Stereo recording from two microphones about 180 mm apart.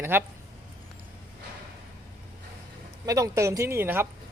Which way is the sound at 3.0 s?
20° right (ahead or behind).